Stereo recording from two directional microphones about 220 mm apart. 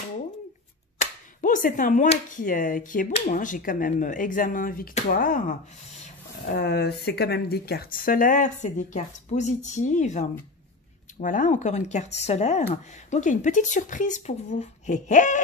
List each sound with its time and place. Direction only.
1.4 s speech: 35° left (ahead or behind)